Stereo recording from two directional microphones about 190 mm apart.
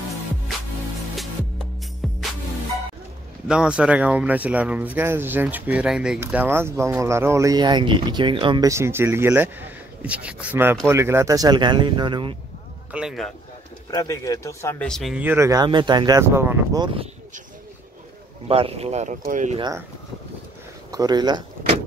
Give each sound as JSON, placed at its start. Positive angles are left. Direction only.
{"t": 1.1, "sound": "music", "side_deg": 0}
{"t": 3.4, "sound": "speech", "side_deg": -5}
{"t": 12.9, "sound": "speech", "side_deg": 0}
{"t": 13.8, "sound": "speech", "side_deg": 20}
{"t": 18.5, "sound": "speech", "side_deg": -30}
{"t": 20.9, "sound": "speech", "side_deg": -20}